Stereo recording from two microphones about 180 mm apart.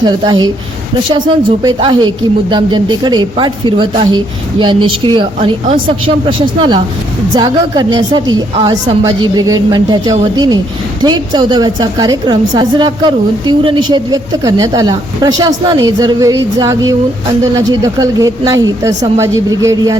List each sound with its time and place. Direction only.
0.0 s a woman's voice: 25° right (ahead or behind)